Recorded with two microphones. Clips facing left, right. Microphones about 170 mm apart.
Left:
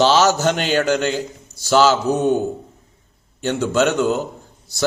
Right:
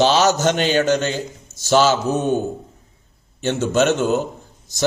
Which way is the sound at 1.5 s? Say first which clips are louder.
Left 1 dB; 20° right (ahead or behind).